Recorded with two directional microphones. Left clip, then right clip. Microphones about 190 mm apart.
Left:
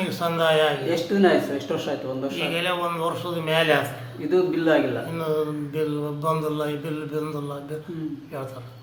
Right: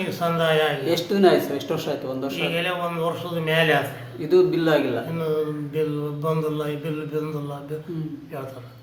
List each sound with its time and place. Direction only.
0.2 s speech: 5° left (ahead or behind)
0.9 s speech: 20° right (ahead or behind)
2.4 s mantra: 5° left (ahead or behind)
4.3 s speech: 20° right (ahead or behind)
5.1 s mantra: 10° left (ahead or behind)